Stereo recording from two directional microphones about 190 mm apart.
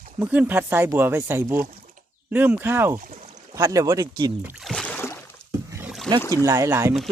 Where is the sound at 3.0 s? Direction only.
45° right (ahead or behind).